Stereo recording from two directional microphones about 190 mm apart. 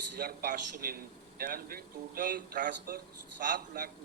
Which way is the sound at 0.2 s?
55° right (ahead or behind).